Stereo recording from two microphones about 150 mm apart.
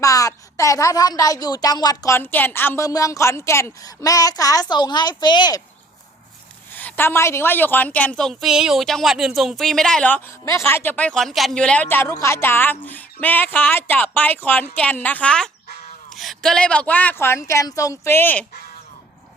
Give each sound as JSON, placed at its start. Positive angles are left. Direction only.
{"t": 0.0, "sound": "a woman's voice", "side_deg": 20}
{"t": 6.7, "sound": "a woman's voice", "side_deg": 10}
{"t": 10.4, "sound": "speech", "side_deg": 15}